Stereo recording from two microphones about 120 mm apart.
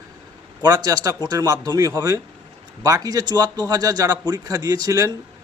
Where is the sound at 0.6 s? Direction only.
30° right (ahead or behind).